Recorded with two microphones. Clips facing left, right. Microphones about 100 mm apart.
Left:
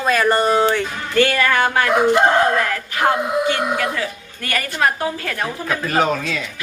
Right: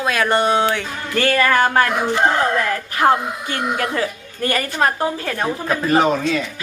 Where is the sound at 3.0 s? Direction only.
40° right (ahead or behind).